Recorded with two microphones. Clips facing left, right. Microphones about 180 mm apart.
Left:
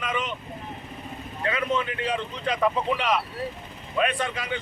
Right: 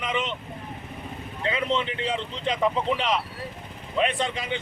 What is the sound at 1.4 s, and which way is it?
Speech, 25° right (ahead or behind).